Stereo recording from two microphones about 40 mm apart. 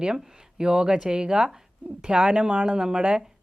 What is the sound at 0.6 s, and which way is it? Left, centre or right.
Speech, right.